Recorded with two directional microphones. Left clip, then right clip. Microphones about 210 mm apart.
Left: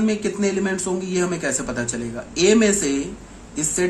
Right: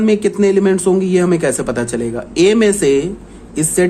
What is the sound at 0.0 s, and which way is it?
Speech, 40° right (ahead or behind).